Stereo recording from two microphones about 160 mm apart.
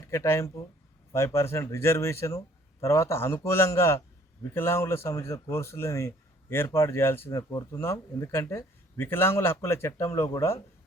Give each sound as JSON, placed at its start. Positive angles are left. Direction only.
{"t": 0.1, "sound": "speech", "side_deg": 15}